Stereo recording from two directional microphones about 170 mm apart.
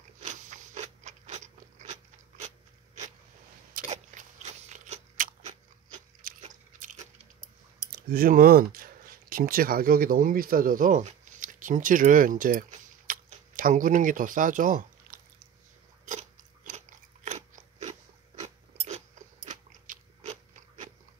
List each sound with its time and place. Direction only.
0.2 s crunch: 45° right (ahead or behind)
7.9 s speech: 60° right (ahead or behind)
13.0 s a sound: 55° right (ahead or behind)
16.1 s biting: 45° right (ahead or behind)